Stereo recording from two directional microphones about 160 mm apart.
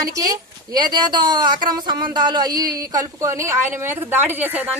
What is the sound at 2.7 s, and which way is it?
A woman's voice, 20° right (ahead or behind).